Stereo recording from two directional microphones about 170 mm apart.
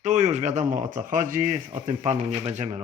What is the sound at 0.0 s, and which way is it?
Speech, 45° right (ahead or behind).